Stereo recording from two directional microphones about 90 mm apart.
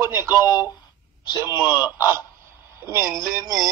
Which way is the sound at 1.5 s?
20° right (ahead or behind).